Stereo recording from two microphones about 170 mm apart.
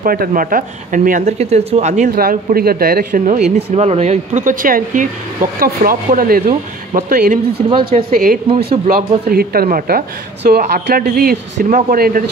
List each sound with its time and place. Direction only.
0.0 s speech: 60° right (ahead or behind); by 2.0 s 40° right (ahead or behind)
2.0 s speech: 60° right (ahead or behind)
3.5 s speech: 40° right (ahead or behind); by 6.4 s 60° right (ahead or behind)
6.4 s speech: 45° right (ahead or behind); by 11.1 s 70° right (ahead or behind)
11.7 s speech: 55° right (ahead or behind)